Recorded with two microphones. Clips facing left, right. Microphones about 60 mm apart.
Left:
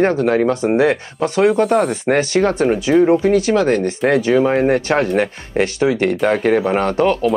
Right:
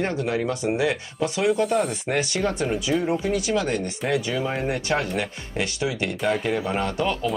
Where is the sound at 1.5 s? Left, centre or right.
Left.